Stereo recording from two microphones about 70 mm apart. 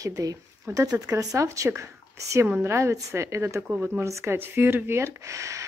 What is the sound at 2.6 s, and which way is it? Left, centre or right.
Speech, right.